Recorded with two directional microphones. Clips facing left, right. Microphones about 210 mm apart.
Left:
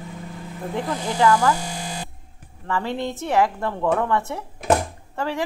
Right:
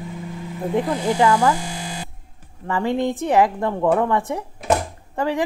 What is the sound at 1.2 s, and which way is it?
Speech, 20° right (ahead or behind).